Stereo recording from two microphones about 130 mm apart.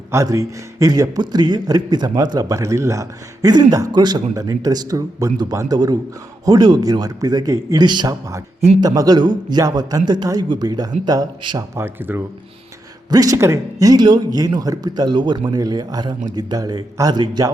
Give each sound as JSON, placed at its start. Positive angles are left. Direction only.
{"t": 0.1, "sound": "a man's voice", "side_deg": -25}
{"t": 13.1, "sound": "a man's voice", "side_deg": -30}